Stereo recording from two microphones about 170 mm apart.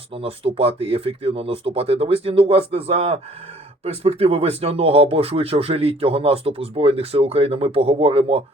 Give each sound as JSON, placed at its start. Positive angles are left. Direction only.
{"t": 0.1, "sound": "speech", "side_deg": -35}